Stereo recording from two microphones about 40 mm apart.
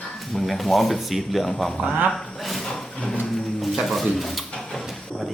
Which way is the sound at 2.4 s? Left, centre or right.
Centre.